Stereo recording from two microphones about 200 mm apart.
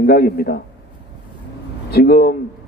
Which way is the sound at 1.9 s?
50° left (ahead or behind).